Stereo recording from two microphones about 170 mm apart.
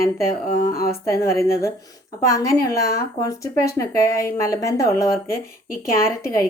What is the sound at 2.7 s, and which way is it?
Speech, 65° left (ahead or behind).